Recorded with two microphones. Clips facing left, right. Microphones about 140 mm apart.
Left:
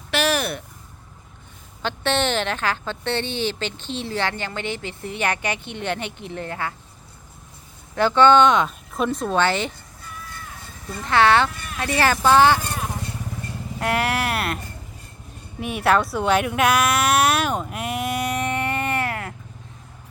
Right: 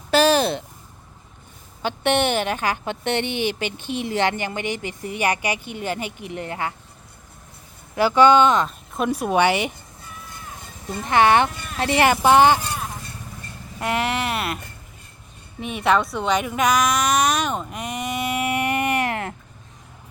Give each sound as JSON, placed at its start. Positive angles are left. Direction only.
{"t": 0.1, "sound": "speech", "side_deg": -30}
{"t": 1.8, "sound": "a woman's voice", "side_deg": -15}
{"t": 7.9, "sound": "speech", "side_deg": -10}
{"t": 9.0, "sound": "a woman's voice", "side_deg": -15}
{"t": 13.7, "sound": "speech", "side_deg": 0}
{"t": 15.6, "sound": "speech", "side_deg": 5}